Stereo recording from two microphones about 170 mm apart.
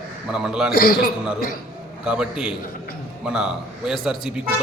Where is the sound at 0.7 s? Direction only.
60° left (ahead or behind).